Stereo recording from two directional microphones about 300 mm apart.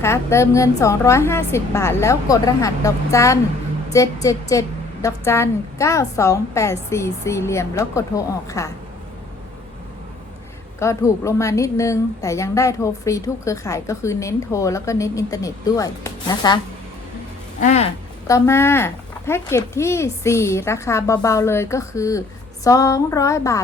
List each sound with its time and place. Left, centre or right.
0.0 s a woman's voice: centre
10.8 s a woman's voice: centre
17.6 s speech: left
18.3 s a woman's voice: centre